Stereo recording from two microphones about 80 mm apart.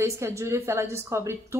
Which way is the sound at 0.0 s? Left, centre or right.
Right.